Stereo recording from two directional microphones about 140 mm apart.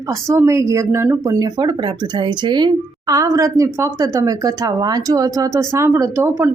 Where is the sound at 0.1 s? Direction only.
20° right (ahead or behind).